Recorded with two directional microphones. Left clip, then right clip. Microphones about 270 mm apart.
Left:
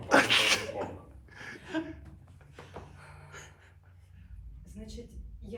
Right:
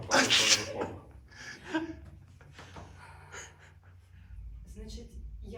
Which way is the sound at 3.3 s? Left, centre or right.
Right.